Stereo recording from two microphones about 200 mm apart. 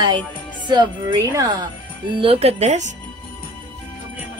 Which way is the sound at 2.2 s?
30° right (ahead or behind).